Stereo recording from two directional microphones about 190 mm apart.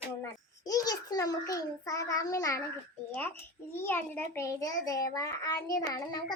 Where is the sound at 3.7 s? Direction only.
10° left (ahead or behind).